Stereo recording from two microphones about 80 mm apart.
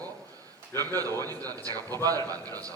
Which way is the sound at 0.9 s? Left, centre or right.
Right.